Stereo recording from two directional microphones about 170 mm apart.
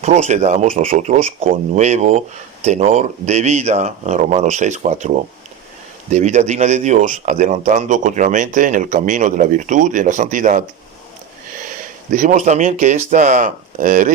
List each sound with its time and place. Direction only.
0.0 s speech: 40° right (ahead or behind)
12.1 s speech: 50° right (ahead or behind)